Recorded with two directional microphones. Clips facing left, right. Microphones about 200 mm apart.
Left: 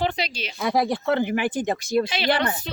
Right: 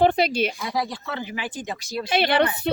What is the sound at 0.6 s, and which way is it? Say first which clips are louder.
Speech: left 6 dB; 55° left (ahead or behind).